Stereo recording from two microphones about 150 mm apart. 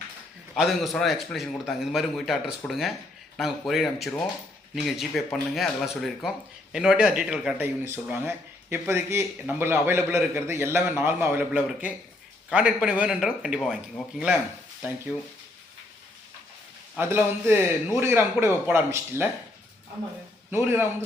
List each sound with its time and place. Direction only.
0.5 s a man's voice: centre (ahead or behind)
17.0 s speech: 15° right (ahead or behind)
20.5 s speech: 15° right (ahead or behind)